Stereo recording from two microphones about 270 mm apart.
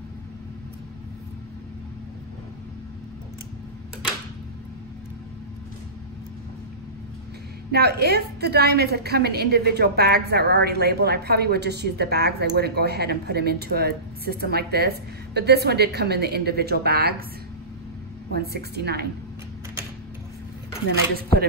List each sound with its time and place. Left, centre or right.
7.7 s a woman's voice: right
18.4 s a woman's voice: right